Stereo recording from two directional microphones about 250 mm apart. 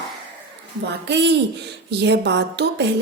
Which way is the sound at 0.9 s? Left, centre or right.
Right.